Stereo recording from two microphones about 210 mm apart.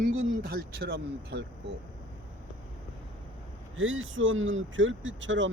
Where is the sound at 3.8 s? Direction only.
70° right (ahead or behind).